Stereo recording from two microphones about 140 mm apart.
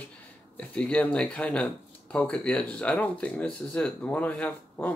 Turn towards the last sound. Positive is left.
turn(degrees=10)  # may be behind; listen again after turning